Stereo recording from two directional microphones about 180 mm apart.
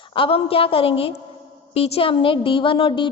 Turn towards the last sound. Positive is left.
turn(degrees=30)  # may be behind; listen again after turning